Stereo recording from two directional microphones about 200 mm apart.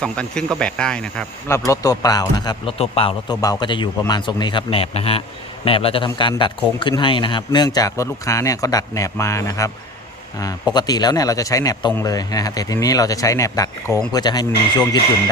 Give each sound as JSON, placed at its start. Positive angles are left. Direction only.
{"t": 0.0, "sound": "a man's voice", "side_deg": 5}